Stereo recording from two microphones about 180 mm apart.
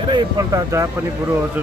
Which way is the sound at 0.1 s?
20° right (ahead or behind).